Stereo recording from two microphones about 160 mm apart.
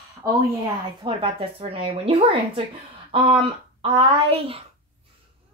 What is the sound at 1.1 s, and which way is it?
Speech, 35° right (ahead or behind).